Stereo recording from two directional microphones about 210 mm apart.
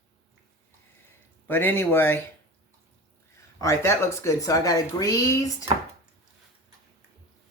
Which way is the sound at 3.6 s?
15° left (ahead or behind).